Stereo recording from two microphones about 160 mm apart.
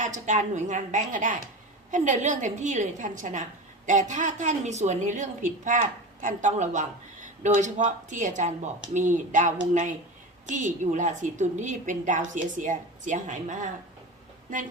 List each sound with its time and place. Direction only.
0.0 s speech: 50° right (ahead or behind)